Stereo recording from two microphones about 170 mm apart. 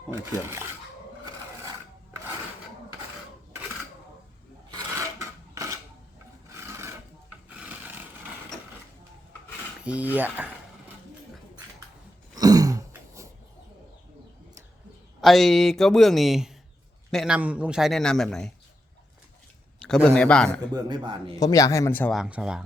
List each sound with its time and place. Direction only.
0.1 s speech: 15° right (ahead or behind)
4.7 s filing: 20° right (ahead or behind)
7.6 s a sound: 10° right (ahead or behind)
9.8 s speech: 10° right (ahead or behind)
12.4 s throat clearing: 20° right (ahead or behind)
15.2 s a man's voice: centre (ahead or behind)
19.8 s speech: 10° left (ahead or behind)
20.7 s speech: 25° right (ahead or behind)
21.3 s speech: 20° left (ahead or behind)
22.1 s a man's voice: 5° right (ahead or behind)